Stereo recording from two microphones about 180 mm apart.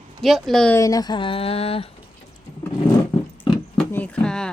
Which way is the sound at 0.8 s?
20° left (ahead or behind).